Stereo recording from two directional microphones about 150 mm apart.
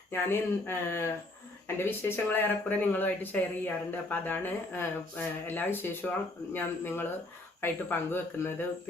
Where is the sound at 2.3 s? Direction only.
10° left (ahead or behind).